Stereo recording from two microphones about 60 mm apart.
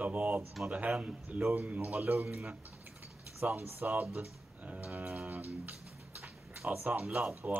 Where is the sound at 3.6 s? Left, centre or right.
Right.